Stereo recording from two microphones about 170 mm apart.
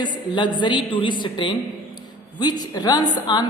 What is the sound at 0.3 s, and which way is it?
Speech, 25° left (ahead or behind).